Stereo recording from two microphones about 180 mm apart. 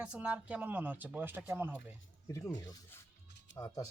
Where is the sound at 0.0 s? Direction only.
5° right (ahead or behind).